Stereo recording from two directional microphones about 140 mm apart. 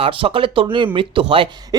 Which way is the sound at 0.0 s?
40° right (ahead or behind).